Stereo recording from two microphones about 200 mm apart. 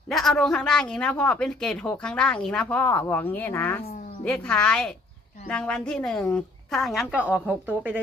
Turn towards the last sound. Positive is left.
turn(degrees=-5)  # may be behind; listen again after turning